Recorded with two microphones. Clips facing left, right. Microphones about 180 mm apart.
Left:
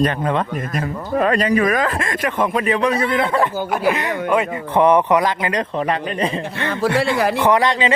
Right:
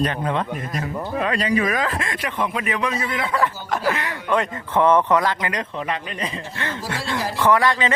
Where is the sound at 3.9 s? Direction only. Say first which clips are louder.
Left 5 dB; 20° left (ahead or behind).